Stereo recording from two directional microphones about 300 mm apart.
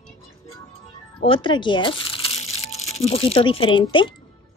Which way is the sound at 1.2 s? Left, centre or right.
Centre.